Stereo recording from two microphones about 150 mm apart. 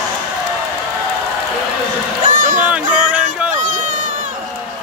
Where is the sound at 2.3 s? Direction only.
60° right (ahead or behind).